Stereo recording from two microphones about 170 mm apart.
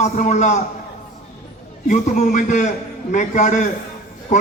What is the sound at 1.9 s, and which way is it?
A man's voice, 45° left (ahead or behind).